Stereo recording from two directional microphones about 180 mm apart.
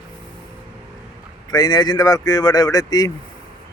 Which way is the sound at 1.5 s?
20° left (ahead or behind).